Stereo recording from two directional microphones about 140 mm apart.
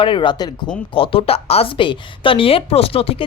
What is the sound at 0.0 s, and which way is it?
A woman's voice, 35° left (ahead or behind).